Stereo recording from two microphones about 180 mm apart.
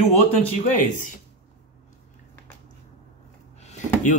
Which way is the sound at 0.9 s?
45° left (ahead or behind).